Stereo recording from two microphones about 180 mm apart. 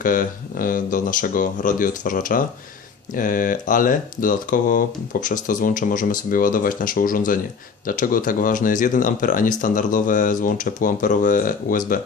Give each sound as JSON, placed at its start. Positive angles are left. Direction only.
{"t": 0.0, "sound": "speech", "side_deg": 50}